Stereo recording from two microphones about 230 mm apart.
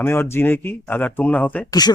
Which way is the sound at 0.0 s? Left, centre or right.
Centre.